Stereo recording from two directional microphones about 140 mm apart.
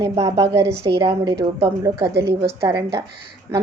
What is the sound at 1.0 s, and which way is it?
Speech, 35° right (ahead or behind).